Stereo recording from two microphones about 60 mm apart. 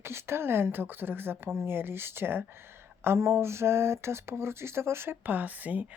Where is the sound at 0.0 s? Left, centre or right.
Right.